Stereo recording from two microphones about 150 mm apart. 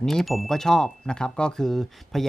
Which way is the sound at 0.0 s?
Centre (ahead or behind).